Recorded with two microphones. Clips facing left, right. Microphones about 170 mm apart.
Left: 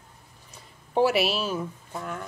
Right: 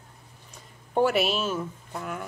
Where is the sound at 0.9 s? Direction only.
5° left (ahead or behind).